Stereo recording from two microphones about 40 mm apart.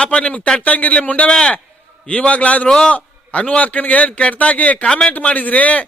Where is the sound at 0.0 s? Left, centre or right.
Left.